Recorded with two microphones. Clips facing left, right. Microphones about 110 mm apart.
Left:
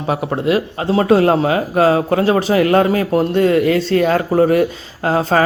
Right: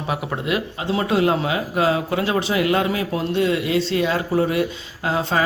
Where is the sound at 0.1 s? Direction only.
35° left (ahead or behind).